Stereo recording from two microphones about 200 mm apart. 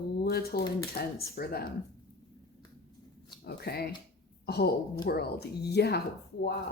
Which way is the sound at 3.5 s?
50° left (ahead or behind).